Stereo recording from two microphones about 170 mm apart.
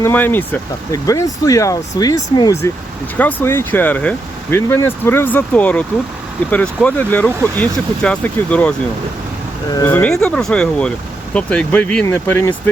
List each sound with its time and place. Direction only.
0.0 s speech: 10° left (ahead or behind)
3.2 s speech: 10° left (ahead or behind)
9.8 s speech: 10° left (ahead or behind)